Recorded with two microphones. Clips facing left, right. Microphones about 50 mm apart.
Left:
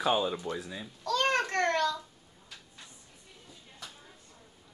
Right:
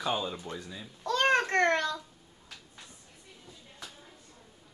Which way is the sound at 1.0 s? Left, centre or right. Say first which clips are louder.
Right 2 dB; right.